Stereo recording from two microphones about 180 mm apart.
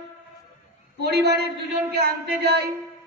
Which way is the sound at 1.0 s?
65° right (ahead or behind).